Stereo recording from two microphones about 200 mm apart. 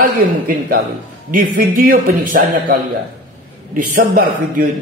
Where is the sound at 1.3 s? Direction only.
45° right (ahead or behind).